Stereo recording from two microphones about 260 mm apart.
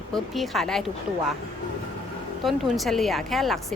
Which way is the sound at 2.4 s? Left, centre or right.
Centre.